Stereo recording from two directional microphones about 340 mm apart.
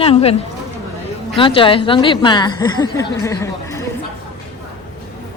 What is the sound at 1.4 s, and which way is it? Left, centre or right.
A woman's voice, centre.